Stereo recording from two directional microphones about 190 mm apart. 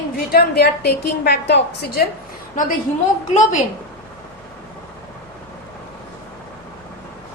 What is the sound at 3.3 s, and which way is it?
Speech, 40° left (ahead or behind).